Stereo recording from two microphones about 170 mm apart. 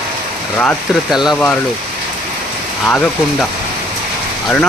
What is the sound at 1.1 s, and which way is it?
Speech, centre (ahead or behind).